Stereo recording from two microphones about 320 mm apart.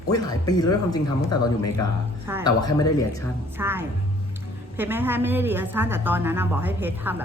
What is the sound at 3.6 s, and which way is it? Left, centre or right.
A woman's voice, centre.